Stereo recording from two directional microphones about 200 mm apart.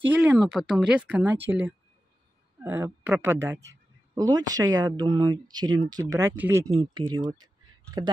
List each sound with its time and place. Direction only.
0.0 s speech: 10° right (ahead or behind)
6.8 s speech: 20° right (ahead or behind)